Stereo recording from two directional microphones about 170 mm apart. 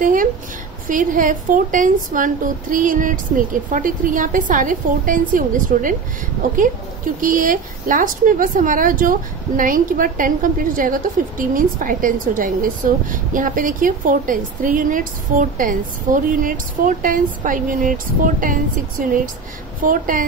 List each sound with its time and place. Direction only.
0.0 s a woman's voice: 50° right (ahead or behind)
7.2 s a woman's voice: 50° right (ahead or behind)
19.8 s a woman's voice: 55° right (ahead or behind)